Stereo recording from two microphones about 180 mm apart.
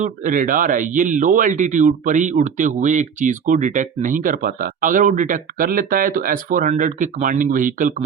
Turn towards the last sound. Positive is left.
turn(degrees=-45)  # may be behind; listen again after turning